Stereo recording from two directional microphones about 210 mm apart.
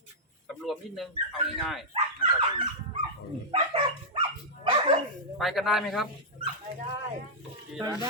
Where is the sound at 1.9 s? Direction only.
25° right (ahead or behind).